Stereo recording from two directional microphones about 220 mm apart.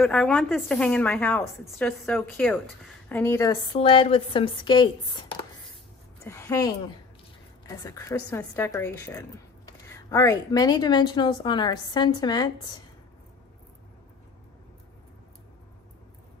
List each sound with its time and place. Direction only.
0.0 s a woman's voice: centre (ahead or behind); by 12.7 s 20° left (ahead or behind)